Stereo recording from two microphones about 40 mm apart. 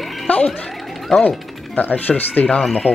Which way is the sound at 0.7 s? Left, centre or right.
Centre.